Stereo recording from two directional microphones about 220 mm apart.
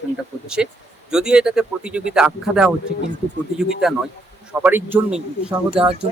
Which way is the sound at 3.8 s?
Centre (ahead or behind).